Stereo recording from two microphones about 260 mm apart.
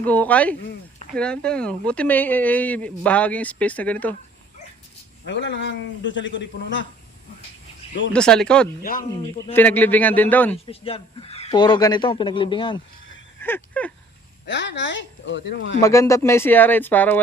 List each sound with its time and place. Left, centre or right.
0.0 s speech: centre
5.2 s a man's voice: left
8.1 s speech: centre
8.8 s a man's voice: left
9.4 s speech: centre
10.7 s speech: left
13.4 s a sound: centre
14.4 s a man's voice: left
15.8 s speech: centre